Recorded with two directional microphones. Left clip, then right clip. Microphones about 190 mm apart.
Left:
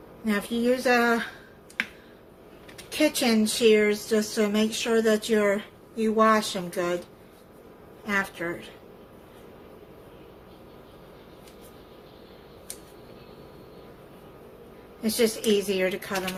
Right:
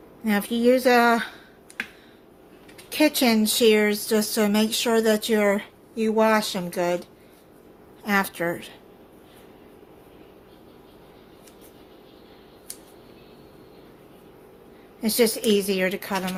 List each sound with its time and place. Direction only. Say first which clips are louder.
0.3 s speech: right 5 dB; 45° right (ahead or behind)
3.0 s speech: right 3 dB; 50° right (ahead or behind)
15.0 s speech: right 3 dB; 45° right (ahead or behind)